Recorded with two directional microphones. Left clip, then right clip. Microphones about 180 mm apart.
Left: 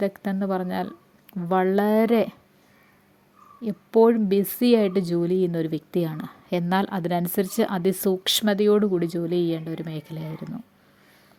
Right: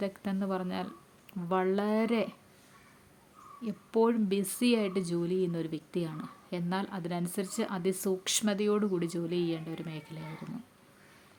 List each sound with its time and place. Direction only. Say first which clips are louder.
0.0 s speech: left 9 dB; 30° left (ahead or behind)
3.6 s speech: left 10 dB; 30° left (ahead or behind)